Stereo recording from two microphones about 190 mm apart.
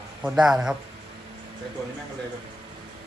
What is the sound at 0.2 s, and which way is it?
Speech, 5° right (ahead or behind).